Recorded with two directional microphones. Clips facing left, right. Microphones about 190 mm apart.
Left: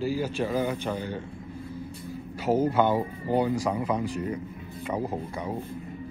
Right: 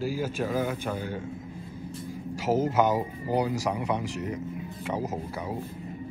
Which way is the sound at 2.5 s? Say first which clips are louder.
Left 1 dB; 15° right (ahead or behind).